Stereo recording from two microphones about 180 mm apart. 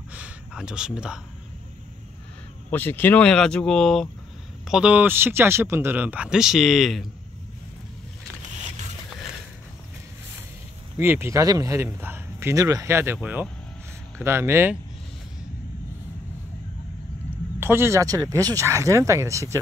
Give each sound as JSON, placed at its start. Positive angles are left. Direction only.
{"t": 0.1, "sound": "a sound", "side_deg": -5}
{"t": 2.7, "sound": "speech", "side_deg": 10}
{"t": 11.0, "sound": "speech", "side_deg": -15}
{"t": 17.6, "sound": "speech", "side_deg": -15}